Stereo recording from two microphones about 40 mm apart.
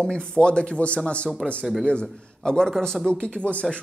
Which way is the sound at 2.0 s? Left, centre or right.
Centre.